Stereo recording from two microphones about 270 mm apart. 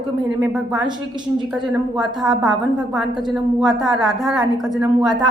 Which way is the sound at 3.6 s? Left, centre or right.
Centre.